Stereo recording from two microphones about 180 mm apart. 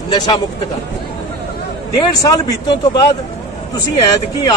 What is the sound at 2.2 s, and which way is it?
Speech, 20° left (ahead or behind).